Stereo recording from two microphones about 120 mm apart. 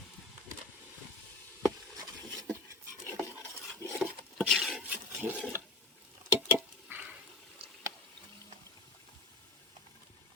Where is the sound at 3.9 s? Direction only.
Centre (ahead or behind).